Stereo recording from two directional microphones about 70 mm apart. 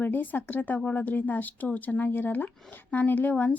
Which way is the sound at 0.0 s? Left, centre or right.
Left.